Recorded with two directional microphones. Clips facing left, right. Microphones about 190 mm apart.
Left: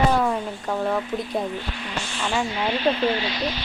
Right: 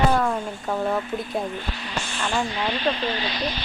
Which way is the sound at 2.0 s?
50° right (ahead or behind).